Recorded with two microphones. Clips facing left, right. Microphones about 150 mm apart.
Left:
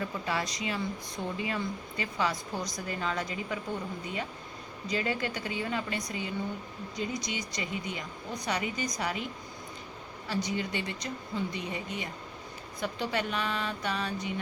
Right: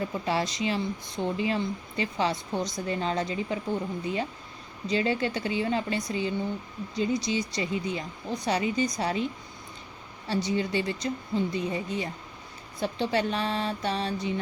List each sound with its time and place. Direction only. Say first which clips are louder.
0.0 s speech: right 4 dB; 30° right (ahead or behind)